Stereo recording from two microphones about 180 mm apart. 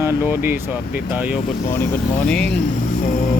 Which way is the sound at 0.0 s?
15° right (ahead or behind).